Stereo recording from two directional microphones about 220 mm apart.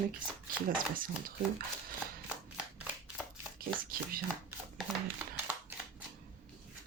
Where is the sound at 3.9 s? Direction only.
40° right (ahead or behind).